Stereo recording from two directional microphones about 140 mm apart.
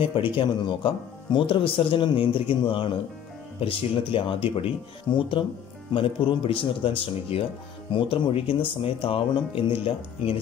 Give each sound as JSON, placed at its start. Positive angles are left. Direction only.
{"t": 0.0, "sound": "speech", "side_deg": 35}